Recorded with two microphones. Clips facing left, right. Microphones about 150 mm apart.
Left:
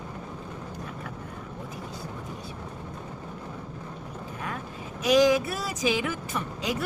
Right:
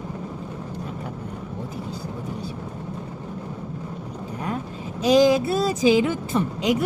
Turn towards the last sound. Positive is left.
turn(degrees=-25)  # may be behind; listen again after turning